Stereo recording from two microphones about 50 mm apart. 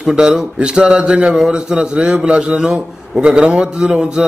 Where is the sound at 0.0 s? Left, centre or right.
Centre.